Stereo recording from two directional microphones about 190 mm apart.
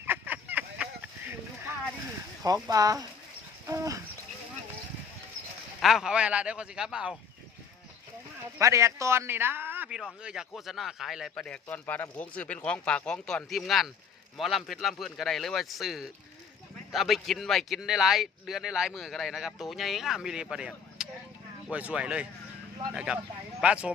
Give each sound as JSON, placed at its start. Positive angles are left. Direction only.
{"t": 0.0, "sound": "a sound", "side_deg": -10}
{"t": 2.4, "sound": "a man's voice", "side_deg": -20}
{"t": 5.8, "sound": "speech", "side_deg": 0}
{"t": 8.5, "sound": "a man's voice", "side_deg": -15}